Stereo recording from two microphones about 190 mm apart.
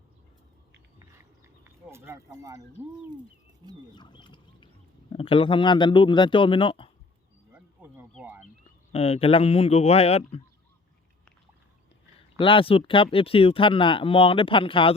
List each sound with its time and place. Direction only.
0.9 s a sound: 15° right (ahead or behind)
3.9 s a sound: 25° left (ahead or behind)
5.1 s speech: 30° left (ahead or behind)
7.5 s bee: 10° right (ahead or behind)
8.1 s speech: 10° right (ahead or behind)
8.9 s speech: 35° left (ahead or behind)
12.4 s speech: 25° left (ahead or behind)